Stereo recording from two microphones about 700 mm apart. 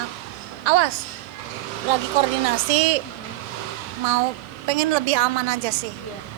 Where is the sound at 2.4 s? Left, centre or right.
Right.